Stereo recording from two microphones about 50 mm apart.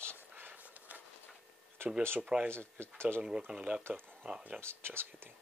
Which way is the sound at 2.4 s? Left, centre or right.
Right.